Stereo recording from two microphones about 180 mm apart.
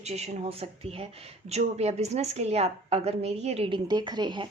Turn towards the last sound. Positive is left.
turn(degrees=-25)  # may be behind; listen again after turning